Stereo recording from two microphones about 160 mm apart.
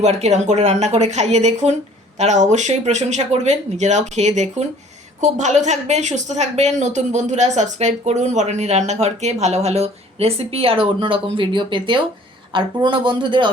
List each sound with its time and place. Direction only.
0.0 s a woman's voice: 45° right (ahead or behind)